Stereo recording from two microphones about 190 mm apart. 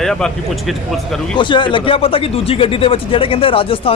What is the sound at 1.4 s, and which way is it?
Speech, 25° left (ahead or behind).